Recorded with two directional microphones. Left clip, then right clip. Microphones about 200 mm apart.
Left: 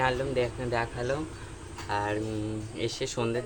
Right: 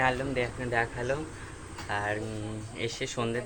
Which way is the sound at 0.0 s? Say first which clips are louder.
Left 1 dB; 10° left (ahead or behind).